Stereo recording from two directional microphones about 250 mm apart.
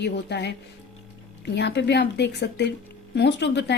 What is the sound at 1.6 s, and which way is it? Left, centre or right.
A woman's voice, left.